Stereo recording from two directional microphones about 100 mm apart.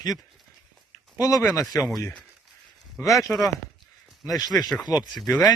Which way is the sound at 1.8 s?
5° left (ahead or behind).